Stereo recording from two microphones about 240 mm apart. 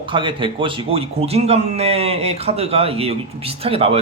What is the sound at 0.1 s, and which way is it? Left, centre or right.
A man's voice, right.